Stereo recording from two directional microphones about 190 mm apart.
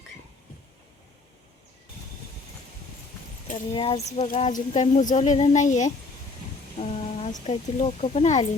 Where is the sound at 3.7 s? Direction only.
30° left (ahead or behind).